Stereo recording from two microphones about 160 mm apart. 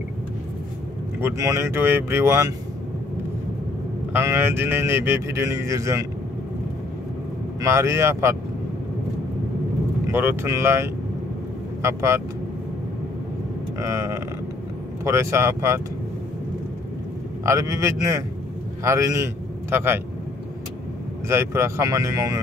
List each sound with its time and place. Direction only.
1.2 s speech: 20° right (ahead or behind)
4.2 s speech: 15° right (ahead or behind)
7.6 s speech: 20° right (ahead or behind)
10.0 s speech: 15° right (ahead or behind)
13.7 s speech: 15° right (ahead or behind)
17.5 s a man's voice: 20° right (ahead or behind)
21.3 s speech: 15° right (ahead or behind)